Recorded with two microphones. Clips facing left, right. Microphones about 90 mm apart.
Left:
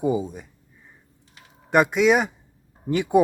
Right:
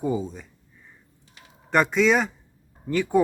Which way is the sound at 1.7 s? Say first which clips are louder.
Left 2 dB; 10° left (ahead or behind).